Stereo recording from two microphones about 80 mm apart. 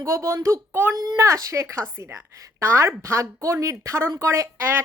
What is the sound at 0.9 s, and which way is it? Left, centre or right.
A woman's voice, right.